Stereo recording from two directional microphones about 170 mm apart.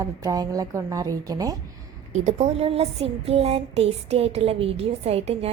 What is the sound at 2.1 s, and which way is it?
A woman's voice, 45° right (ahead or behind).